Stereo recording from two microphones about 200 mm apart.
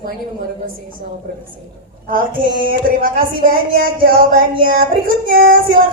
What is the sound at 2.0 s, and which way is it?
Speech, 45° right (ahead or behind).